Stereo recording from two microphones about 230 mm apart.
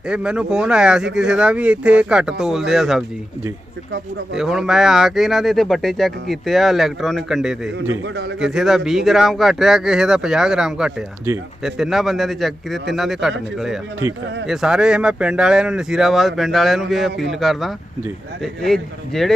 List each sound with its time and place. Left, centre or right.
0.1 s speech: centre
4.4 s speech: centre
7.8 s a man's voice: right
8.4 s speech: centre
14.4 s speech: centre